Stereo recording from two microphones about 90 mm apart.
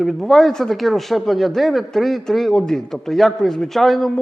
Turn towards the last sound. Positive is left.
turn(degrees=0)  # may be behind; listen again after turning